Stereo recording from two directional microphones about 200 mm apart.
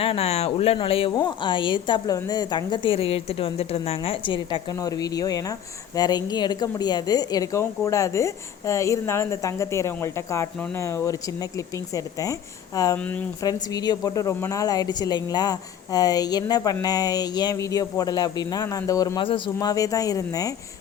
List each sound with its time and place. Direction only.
0.0 s speech: 30° left (ahead or behind)